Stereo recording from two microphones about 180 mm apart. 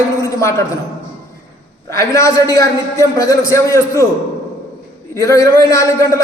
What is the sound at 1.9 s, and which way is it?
A man's voice, 15° left (ahead or behind).